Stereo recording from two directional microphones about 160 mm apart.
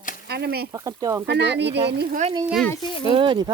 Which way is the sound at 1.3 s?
90° right.